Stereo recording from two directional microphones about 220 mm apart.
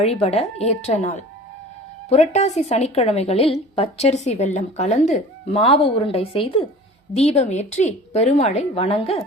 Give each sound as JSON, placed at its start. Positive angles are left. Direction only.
{"t": 0.0, "sound": "a woman's voice", "side_deg": 25}